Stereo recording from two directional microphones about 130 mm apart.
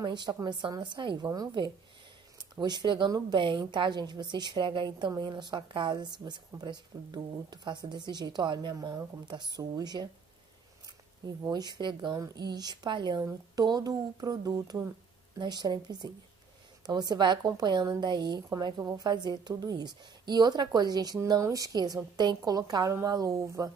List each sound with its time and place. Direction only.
0.0 s speech: 35° right (ahead or behind)
11.2 s speech: 30° right (ahead or behind)